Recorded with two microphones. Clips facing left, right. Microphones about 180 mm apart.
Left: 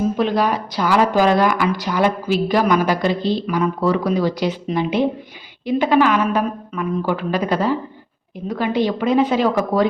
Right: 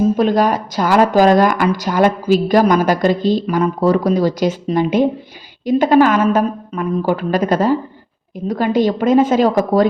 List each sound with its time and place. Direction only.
0.2 s a woman's voice: 45° right (ahead or behind)